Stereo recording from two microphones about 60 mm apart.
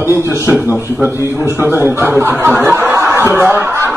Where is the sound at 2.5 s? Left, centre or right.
Right.